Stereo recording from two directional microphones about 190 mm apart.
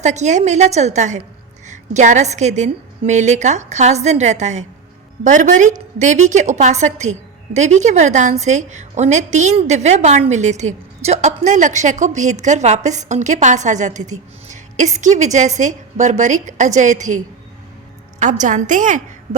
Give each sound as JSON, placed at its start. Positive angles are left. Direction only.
{"t": 0.0, "sound": "a woman's voice", "side_deg": -35}
{"t": 18.2, "sound": "a woman's voice", "side_deg": -40}